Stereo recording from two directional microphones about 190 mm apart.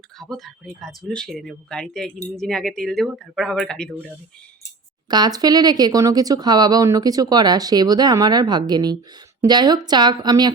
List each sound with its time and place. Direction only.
0.2 s speech: centre (ahead or behind)
5.0 s speech: 20° right (ahead or behind)